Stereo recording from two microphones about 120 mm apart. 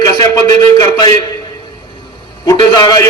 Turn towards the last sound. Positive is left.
turn(degrees=30)  # may be behind; listen again after turning